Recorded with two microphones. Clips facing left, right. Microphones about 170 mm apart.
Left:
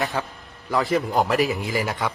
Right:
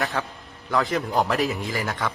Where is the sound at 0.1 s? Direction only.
10° left (ahead or behind).